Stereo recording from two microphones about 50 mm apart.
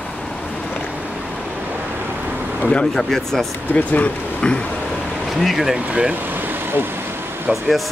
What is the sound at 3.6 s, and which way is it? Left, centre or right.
Speech, left.